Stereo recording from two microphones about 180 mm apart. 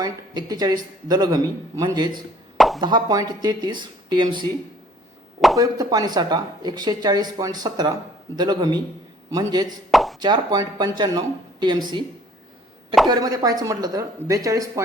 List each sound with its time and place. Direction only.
0.0 s speech: 20° right (ahead or behind)
2.6 s plop: centre (ahead or behind)
2.8 s speech: 20° right (ahead or behind)
5.5 s speech: 20° right (ahead or behind)
9.9 s plop: centre (ahead or behind)
10.2 s speech: 25° right (ahead or behind)
13.1 s speech: 20° right (ahead or behind)